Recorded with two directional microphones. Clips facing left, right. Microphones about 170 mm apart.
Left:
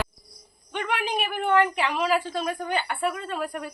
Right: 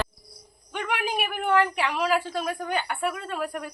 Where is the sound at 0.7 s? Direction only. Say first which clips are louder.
Left 1 dB; 5° right (ahead or behind).